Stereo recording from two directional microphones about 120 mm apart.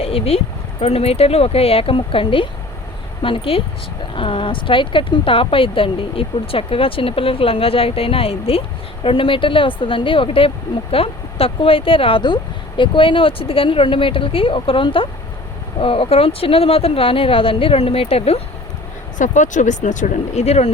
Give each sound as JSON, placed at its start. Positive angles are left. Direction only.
{"t": 0.0, "sound": "speech", "side_deg": 55}
{"t": 19.2, "sound": "speech", "side_deg": 90}